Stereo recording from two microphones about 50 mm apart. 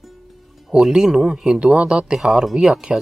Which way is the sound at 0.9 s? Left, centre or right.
Centre.